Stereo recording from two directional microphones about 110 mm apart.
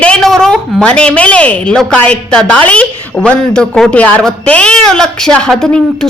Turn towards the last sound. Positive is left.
turn(degrees=5)  # may be behind; listen again after turning